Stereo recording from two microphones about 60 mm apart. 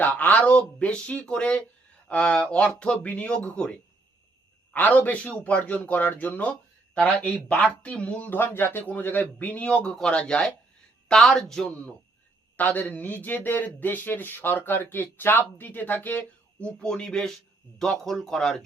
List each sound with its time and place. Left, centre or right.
0.0 s speech: left
4.7 s speech: left; by 11.6 s centre
12.5 s a man's voice: left; by 18.6 s centre